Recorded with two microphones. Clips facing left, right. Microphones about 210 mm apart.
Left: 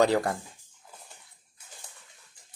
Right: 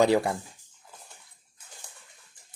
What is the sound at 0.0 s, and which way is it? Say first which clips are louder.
Speech: right 1 dB; 10° right (ahead or behind).